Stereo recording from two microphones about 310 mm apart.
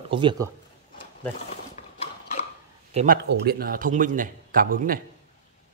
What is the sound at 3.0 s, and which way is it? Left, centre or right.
Speech, right.